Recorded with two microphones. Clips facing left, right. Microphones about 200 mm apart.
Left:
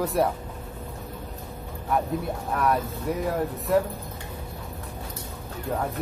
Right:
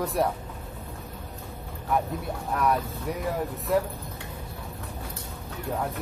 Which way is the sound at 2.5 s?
Centre (ahead or behind).